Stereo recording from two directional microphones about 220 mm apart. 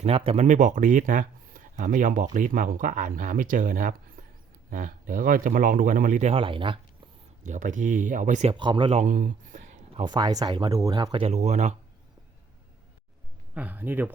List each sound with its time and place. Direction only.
0.0 s speech: 30° right (ahead or behind)
7.4 s speech: 35° right (ahead or behind)
9.9 s speech: 20° right (ahead or behind)
13.5 s speech: 5° right (ahead or behind)